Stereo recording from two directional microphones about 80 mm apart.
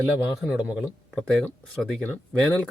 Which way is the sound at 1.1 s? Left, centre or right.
Centre.